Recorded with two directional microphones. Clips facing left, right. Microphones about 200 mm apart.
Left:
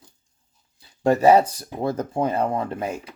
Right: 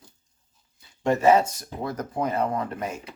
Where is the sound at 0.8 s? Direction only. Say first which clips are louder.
Left 4 dB; 35° left (ahead or behind).